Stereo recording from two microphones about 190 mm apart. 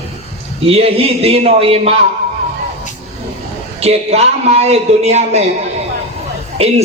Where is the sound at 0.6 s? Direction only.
30° right (ahead or behind).